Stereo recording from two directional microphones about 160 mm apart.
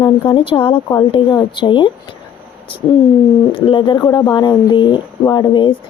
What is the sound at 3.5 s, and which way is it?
Speech, 35° left (ahead or behind).